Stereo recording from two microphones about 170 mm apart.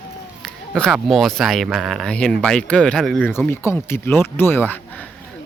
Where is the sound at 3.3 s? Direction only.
15° left (ahead or behind).